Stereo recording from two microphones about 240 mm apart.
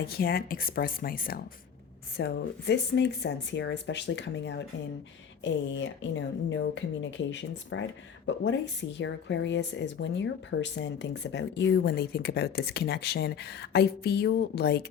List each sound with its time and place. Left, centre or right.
0.1 s speech: left